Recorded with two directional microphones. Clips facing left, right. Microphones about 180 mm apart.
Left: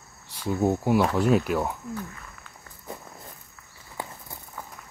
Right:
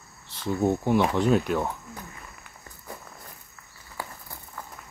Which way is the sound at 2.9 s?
20° left (ahead or behind).